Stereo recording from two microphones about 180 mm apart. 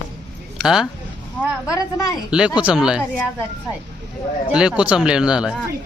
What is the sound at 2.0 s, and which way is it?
Speech, 5° right (ahead or behind).